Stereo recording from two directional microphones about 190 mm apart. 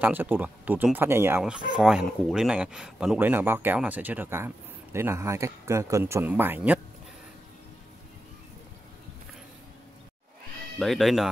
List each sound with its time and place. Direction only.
0.0 s speech: 10° right (ahead or behind)
10.8 s speech: centre (ahead or behind)